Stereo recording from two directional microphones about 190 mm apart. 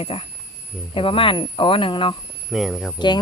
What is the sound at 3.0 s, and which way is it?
Speech, 25° left (ahead or behind).